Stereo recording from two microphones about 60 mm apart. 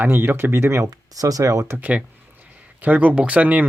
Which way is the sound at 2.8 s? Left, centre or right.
Right.